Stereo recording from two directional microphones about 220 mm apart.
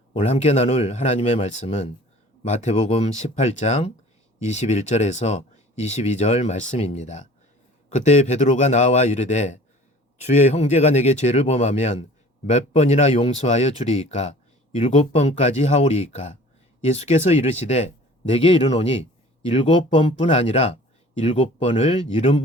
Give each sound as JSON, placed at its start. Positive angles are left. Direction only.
{"t": 0.1, "sound": "speech", "side_deg": 30}